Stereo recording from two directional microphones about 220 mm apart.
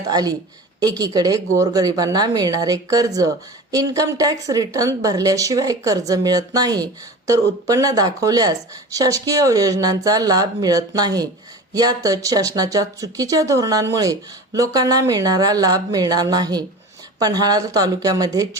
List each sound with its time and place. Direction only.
0.1 s speech: 15° right (ahead or behind)